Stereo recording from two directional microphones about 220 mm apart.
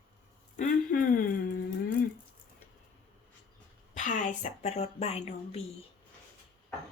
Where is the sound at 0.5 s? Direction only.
40° left (ahead or behind).